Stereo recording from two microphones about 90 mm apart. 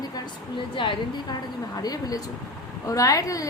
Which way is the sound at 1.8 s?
45° left (ahead or behind).